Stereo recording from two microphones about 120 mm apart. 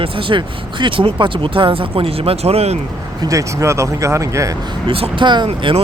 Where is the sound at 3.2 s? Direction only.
25° right (ahead or behind).